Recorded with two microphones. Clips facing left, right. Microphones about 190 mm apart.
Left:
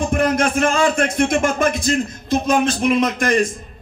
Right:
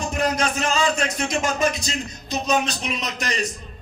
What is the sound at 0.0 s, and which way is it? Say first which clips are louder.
A man's voice: left 6 dB; 55° left (ahead or behind).